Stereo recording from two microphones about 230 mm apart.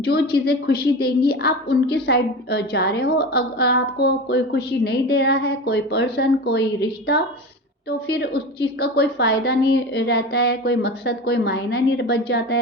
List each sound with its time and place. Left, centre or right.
0.0 s a woman's voice: left